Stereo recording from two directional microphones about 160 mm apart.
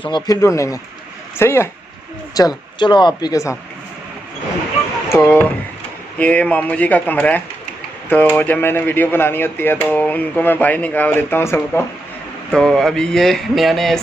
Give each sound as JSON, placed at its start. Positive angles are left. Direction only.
{"t": 0.0, "sound": "speech", "side_deg": 25}
{"t": 2.3, "sound": "speech", "side_deg": 25}
{"t": 5.1, "sound": "speech", "side_deg": 15}
{"t": 12.5, "sound": "speech", "side_deg": 0}